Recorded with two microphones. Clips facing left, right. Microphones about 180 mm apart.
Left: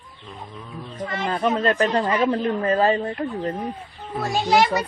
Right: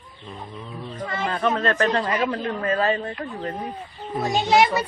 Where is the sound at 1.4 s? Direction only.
15° left (ahead or behind).